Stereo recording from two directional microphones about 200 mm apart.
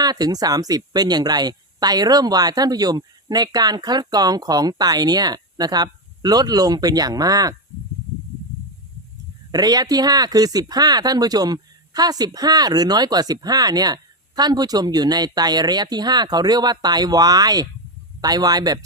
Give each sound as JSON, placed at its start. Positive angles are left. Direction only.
{"t": 0.0, "sound": "speech", "side_deg": -20}
{"t": 9.5, "sound": "speech", "side_deg": -20}